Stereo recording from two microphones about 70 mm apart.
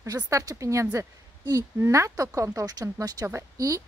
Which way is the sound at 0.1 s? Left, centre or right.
Right.